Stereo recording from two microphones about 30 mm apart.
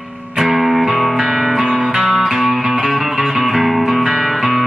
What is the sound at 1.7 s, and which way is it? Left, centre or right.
Music, right.